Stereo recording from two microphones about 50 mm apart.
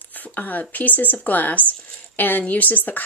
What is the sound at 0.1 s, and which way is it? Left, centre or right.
Speech, left.